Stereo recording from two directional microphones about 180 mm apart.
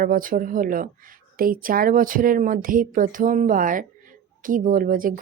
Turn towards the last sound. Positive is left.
turn(degrees=-50)  # may be behind; listen again after turning